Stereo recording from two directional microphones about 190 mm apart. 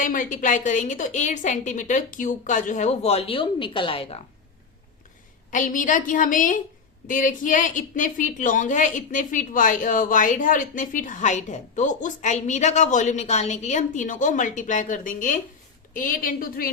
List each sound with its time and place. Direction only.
0.0 s a woman's voice: 45° left (ahead or behind)
5.5 s a woman's voice: 45° left (ahead or behind)